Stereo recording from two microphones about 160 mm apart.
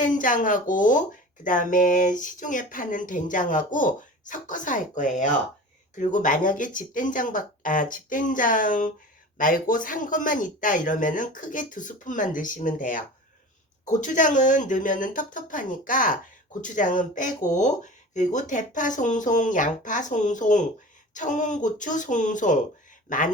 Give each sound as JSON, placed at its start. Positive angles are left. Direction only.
{"t": 0.0, "sound": "speech", "side_deg": 55}